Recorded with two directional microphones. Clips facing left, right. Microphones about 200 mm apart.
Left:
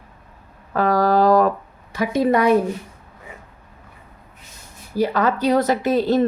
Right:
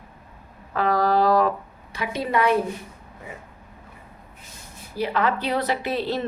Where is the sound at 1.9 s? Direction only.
45° left (ahead or behind).